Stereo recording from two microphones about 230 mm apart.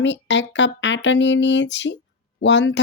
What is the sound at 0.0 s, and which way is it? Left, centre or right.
Speech, left.